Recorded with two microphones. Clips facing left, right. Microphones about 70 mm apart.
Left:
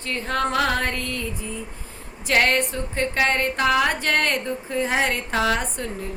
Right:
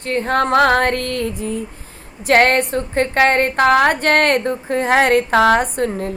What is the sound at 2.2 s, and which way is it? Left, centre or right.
A woman's voice, right.